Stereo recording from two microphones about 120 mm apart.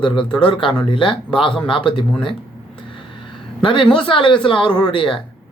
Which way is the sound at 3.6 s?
45° left (ahead or behind).